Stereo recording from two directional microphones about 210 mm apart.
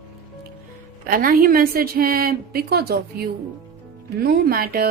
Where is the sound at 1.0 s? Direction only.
40° right (ahead or behind).